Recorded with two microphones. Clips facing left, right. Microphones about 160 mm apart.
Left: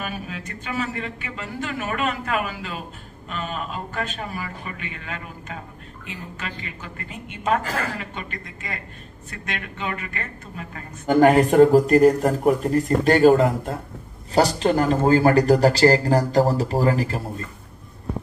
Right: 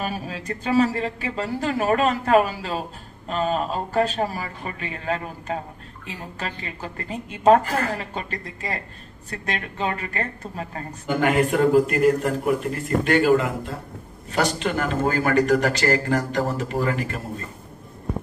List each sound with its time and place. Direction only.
0.0 s speech: 35° right (ahead or behind)
11.1 s speech: 40° left (ahead or behind)